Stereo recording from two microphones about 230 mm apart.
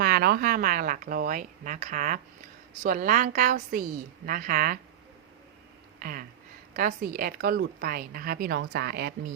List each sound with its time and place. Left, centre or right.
0.0 s a woman's voice: right
6.0 s a sound: right
6.7 s a woman's voice: right